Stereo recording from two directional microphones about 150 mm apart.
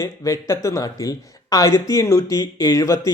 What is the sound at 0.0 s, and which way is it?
Speech, 20° left (ahead or behind).